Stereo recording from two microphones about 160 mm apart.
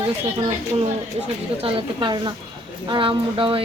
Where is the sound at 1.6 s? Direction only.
25° right (ahead or behind).